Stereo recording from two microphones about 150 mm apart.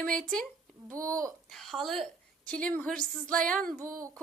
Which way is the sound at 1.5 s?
Centre (ahead or behind).